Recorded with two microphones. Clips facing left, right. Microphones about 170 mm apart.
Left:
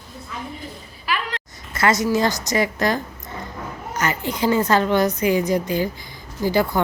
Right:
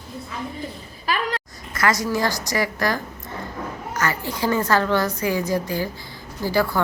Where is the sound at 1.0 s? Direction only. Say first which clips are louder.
Right 2 dB; 40° right (ahead or behind).